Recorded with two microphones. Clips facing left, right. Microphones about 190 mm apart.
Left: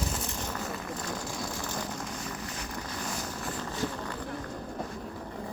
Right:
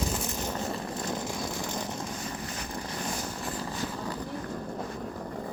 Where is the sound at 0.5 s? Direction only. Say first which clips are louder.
Right 3 dB; 30° right (ahead or behind).